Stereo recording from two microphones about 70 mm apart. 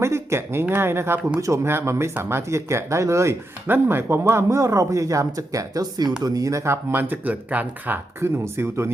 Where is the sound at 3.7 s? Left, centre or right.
Right.